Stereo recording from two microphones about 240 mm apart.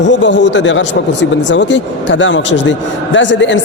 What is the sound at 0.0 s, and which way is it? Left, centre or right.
Speech, left.